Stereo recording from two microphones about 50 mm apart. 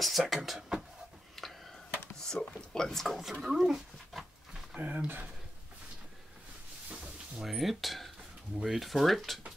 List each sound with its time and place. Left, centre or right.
0.2 s speech: centre
0.6 s a sound: centre
1.4 s a sound: centre
2.1 s speech: centre
4.7 s speech: right
7.3 s speech: centre